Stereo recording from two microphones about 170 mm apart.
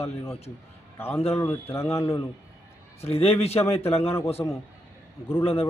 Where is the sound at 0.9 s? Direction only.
15° left (ahead or behind).